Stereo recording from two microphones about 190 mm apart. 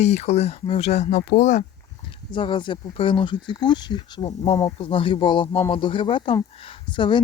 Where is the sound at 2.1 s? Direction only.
25° left (ahead or behind).